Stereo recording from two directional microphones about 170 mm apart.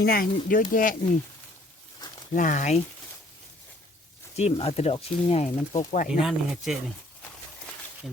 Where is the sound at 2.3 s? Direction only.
50° left (ahead or behind).